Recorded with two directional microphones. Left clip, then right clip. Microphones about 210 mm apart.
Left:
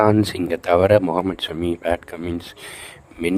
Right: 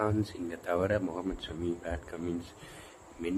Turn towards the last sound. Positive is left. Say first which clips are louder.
# left 13 dB
turn(degrees=55)  # may be behind; listen again after turning